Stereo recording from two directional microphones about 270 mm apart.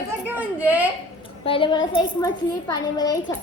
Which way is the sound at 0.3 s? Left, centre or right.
Centre.